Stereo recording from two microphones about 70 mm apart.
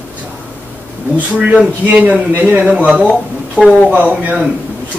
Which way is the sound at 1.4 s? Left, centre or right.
Centre.